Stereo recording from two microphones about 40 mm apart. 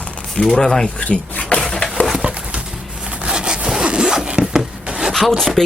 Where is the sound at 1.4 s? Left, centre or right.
Left.